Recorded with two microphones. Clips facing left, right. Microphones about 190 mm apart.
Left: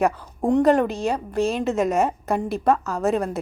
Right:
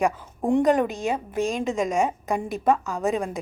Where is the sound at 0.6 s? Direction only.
Centre (ahead or behind).